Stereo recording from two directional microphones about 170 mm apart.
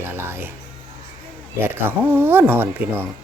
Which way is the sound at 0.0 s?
15° right (ahead or behind).